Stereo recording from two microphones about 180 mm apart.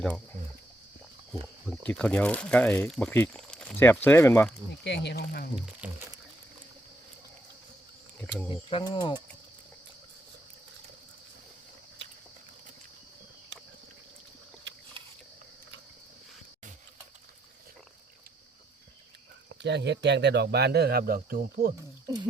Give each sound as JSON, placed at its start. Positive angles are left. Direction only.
{"t": 1.6, "sound": "speech", "side_deg": 5}
{"t": 4.8, "sound": "speech", "side_deg": 70}
{"t": 5.5, "sound": "speech", "side_deg": -5}
{"t": 8.4, "sound": "speech", "side_deg": 25}
{"t": 19.6, "sound": "speech", "side_deg": -75}
{"t": 22.0, "sound": "roaring cats", "side_deg": -20}